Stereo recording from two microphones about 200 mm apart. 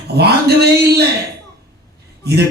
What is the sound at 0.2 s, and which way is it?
Speech, 55° right (ahead or behind).